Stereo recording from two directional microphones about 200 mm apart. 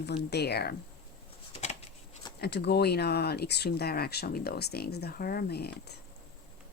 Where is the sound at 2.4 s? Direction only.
55° left (ahead or behind).